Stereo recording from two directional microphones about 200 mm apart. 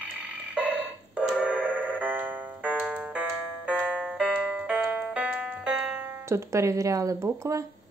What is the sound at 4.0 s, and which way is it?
Music, 5° right (ahead or behind).